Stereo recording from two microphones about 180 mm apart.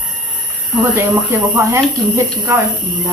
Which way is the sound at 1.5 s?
15° right (ahead or behind).